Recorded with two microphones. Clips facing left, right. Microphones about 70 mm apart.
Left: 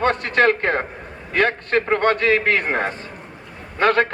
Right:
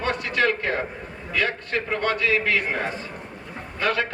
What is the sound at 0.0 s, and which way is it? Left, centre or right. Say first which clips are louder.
A man's voice: left 6 dB; left.